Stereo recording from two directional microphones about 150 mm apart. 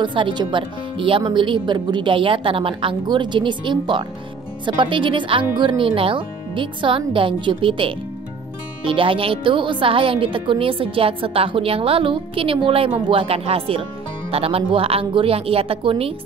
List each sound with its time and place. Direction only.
0.0 s a woman's voice: 35° right (ahead or behind)